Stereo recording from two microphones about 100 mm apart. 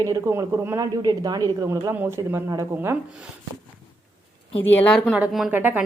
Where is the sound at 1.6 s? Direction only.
30° right (ahead or behind).